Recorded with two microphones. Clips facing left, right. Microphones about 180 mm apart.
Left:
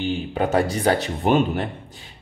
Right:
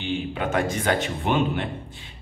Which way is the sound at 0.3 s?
35° left (ahead or behind).